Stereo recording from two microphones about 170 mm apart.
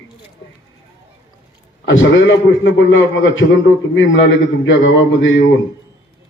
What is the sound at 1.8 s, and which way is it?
A man's voice, 90° left.